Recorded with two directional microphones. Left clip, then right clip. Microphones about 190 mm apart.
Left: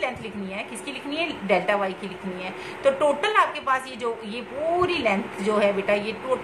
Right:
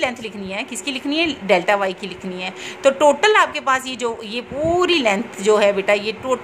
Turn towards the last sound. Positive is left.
turn(degrees=-50)  # may be behind; listen again after turning